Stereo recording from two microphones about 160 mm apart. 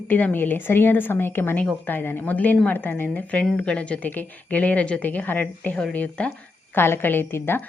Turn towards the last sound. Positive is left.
turn(degrees=15)  # may be behind; listen again after turning